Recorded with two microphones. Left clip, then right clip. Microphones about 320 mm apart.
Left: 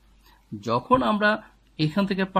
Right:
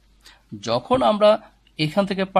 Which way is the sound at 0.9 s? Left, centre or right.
Centre.